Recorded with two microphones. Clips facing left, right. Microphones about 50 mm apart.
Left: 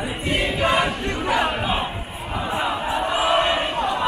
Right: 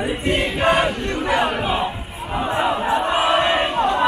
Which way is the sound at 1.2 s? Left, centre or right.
Right.